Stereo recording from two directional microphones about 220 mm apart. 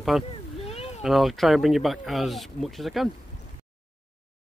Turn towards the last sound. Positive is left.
turn(degrees=0)  # may be behind; listen again after turning